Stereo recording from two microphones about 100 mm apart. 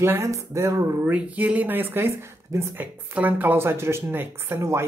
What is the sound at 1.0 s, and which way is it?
Speech, 15° right (ahead or behind).